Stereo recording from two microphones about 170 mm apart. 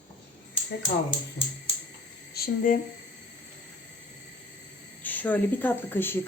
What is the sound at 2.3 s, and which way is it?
Speech, 55° left (ahead or behind).